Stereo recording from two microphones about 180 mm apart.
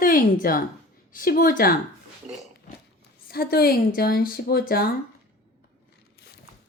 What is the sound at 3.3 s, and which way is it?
A woman's voice, 60° left (ahead or behind).